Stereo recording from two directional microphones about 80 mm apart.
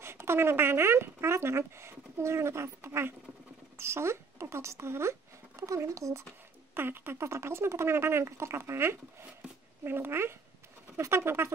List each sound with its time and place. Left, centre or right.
0.0 s speech: right
6.7 s speech: right